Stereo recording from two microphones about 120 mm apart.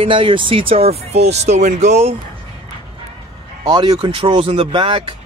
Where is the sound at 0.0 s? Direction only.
45° right (ahead or behind); by 2.1 s 65° right (ahead or behind).